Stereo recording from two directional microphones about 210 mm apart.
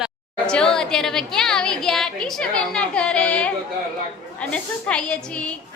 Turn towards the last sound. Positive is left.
turn(degrees=5)  # may be behind; listen again after turning